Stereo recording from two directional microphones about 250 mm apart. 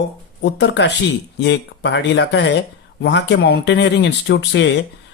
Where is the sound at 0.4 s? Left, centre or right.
Left.